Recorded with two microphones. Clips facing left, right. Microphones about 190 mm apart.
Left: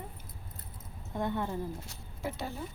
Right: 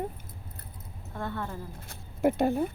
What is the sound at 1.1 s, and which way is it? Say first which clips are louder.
Speech: left 2 dB; 15° left (ahead or behind).